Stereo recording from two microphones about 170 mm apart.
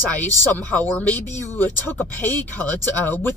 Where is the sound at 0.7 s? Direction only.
10° left (ahead or behind).